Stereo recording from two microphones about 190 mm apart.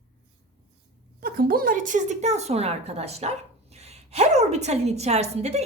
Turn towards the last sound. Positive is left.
turn(degrees=-35)  # may be behind; listen again after turning